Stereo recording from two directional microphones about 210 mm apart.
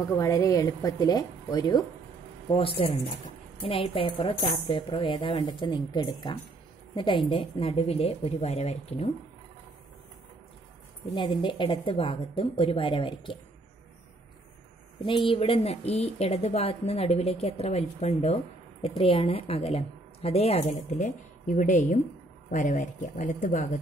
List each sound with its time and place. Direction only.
0.1 s a woman's voice: 15° left (ahead or behind); by 9.1 s 30° left (ahead or behind)
11.1 s a woman's voice: 25° left (ahead or behind)
15.0 s a woman's voice: 25° left (ahead or behind)